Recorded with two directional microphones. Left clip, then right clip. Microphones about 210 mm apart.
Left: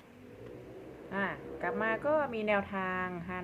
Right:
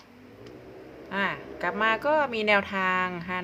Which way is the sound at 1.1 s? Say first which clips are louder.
Right 7 dB; 20° right (ahead or behind).